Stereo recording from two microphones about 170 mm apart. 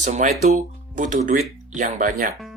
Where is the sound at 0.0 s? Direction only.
45° right (ahead or behind).